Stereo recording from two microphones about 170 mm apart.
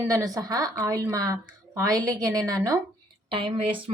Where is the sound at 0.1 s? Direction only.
20° right (ahead or behind).